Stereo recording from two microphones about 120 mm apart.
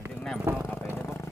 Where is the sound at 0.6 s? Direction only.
20° left (ahead or behind).